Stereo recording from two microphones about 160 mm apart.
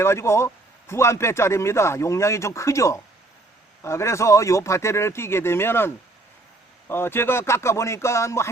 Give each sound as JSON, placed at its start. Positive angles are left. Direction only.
{"t": 0.0, "sound": "speech", "side_deg": 15}